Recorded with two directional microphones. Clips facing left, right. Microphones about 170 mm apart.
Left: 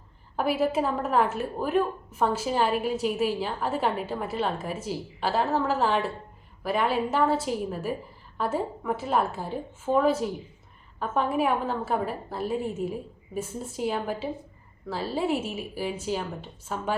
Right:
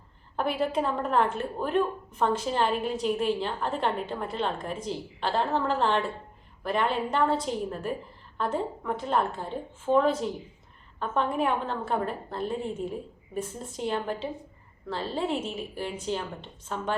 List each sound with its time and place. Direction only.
0.3 s a woman's voice: 5° left (ahead or behind)